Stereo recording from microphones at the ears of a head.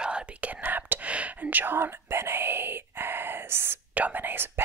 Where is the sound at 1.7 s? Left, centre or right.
Right.